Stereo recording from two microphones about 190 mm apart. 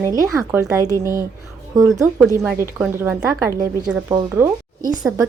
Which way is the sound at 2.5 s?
10° right (ahead or behind).